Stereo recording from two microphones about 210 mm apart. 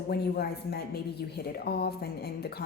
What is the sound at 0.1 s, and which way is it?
Speech, 50° left (ahead or behind).